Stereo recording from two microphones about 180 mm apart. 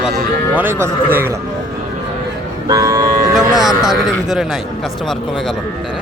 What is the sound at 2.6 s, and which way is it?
Vehicle, 20° right (ahead or behind).